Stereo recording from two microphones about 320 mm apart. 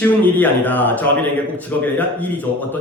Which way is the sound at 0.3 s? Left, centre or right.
Centre.